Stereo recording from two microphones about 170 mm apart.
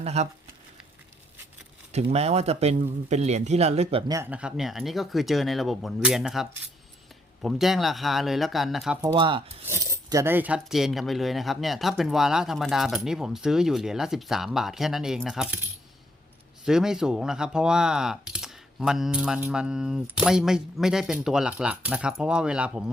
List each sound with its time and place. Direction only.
0.0 s speech: 40° right (ahead or behind)
1.9 s a man's voice: 40° right (ahead or behind)
4.1 s speech: 10° right (ahead or behind)
9.1 s rub: 30° right (ahead or behind)
9.6 s speech: 15° right (ahead or behind)
16.6 s speech: 5° right (ahead or behind)